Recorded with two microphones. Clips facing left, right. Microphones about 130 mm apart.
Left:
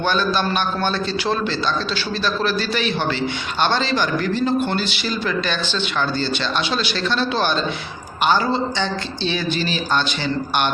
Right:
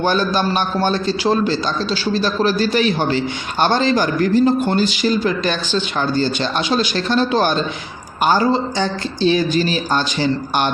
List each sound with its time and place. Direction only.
0.0 s a man's voice: 40° right (ahead or behind)